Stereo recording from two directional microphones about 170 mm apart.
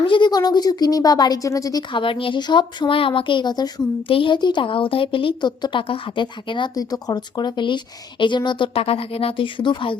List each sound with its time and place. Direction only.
0.1 s speech: 25° left (ahead or behind)